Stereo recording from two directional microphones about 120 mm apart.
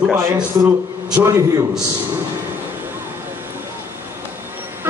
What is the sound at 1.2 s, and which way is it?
Speech, 25° right (ahead or behind).